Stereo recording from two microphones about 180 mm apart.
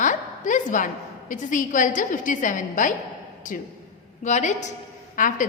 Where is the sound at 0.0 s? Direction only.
45° left (ahead or behind).